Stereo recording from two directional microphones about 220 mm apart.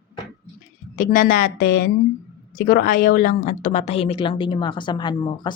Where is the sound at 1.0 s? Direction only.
40° left (ahead or behind); by 5.5 s 20° left (ahead or behind).